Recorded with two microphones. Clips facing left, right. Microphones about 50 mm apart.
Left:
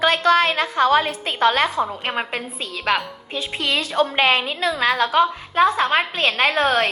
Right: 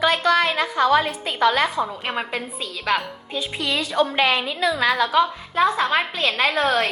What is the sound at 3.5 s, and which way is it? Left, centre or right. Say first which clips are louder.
A woman's voice: left 2 dB; left.